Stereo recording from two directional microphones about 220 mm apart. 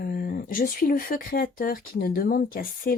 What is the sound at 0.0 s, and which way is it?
Speech, 40° left (ahead or behind).